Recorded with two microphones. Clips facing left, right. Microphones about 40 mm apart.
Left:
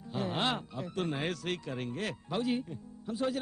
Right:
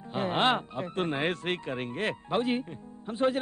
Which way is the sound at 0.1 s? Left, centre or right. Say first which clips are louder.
Right 6 dB; right.